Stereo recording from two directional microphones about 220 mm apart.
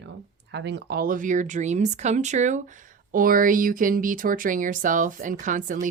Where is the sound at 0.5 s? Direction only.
50° right (ahead or behind).